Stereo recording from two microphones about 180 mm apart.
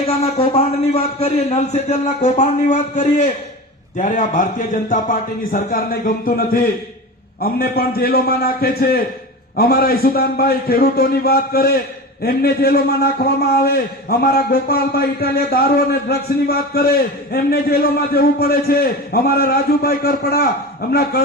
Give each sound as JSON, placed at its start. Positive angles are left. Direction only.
{"t": 0.3, "sound": "a man's voice", "side_deg": 35}